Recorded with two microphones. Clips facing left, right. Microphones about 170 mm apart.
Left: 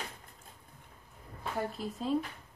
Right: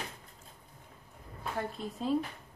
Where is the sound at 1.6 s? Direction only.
Centre (ahead or behind).